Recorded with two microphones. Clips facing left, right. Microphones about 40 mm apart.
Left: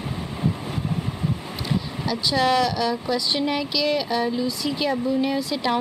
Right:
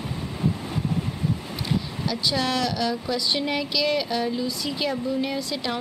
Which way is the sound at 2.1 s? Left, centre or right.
Centre.